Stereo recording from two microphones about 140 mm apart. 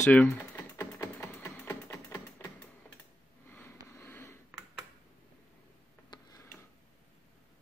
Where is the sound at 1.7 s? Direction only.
15° left (ahead or behind).